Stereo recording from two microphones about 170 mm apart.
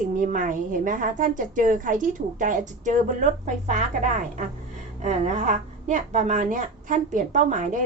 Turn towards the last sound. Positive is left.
turn(degrees=-50)  # may be behind; listen again after turning